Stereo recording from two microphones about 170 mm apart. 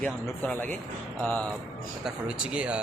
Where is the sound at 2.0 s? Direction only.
5° right (ahead or behind).